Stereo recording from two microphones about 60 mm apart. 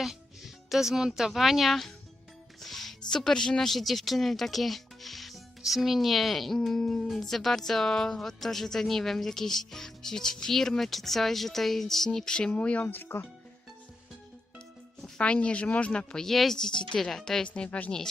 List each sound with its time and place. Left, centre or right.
0.0 s speech: centre
12.8 s speech: left
15.2 s speech: centre
16.2 s speech: centre
17.5 s speech: left